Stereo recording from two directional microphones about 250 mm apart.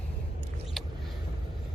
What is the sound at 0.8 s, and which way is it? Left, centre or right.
Vehicle, centre.